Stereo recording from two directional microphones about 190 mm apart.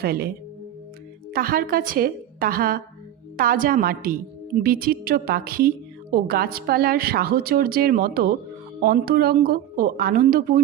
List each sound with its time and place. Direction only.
0.0 s a woman's voice: 55° right (ahead or behind)
1.3 s a woman's voice: 50° right (ahead or behind)